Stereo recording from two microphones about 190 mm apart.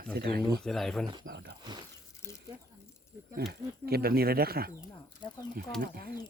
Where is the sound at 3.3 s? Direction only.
55° right (ahead or behind).